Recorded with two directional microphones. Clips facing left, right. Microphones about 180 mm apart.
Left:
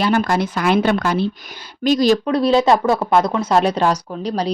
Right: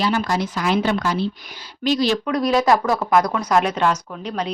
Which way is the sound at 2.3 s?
30° left (ahead or behind).